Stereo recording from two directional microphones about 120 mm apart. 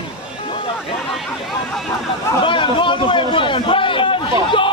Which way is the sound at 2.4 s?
45° left (ahead or behind).